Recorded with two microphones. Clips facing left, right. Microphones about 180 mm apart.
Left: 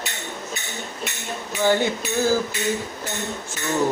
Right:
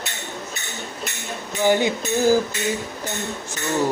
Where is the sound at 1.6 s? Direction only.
15° right (ahead or behind).